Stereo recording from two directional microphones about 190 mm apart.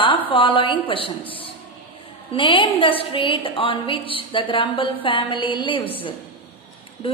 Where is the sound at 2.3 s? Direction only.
25° left (ahead or behind).